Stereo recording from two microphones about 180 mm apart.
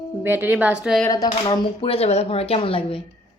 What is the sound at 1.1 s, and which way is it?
Speech, 25° left (ahead or behind).